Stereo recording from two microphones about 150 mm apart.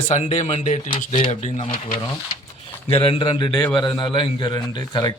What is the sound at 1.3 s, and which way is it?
Speech, 50° left (ahead or behind).